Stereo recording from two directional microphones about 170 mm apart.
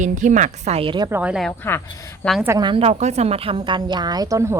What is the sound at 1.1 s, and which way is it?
Speech, 15° right (ahead or behind).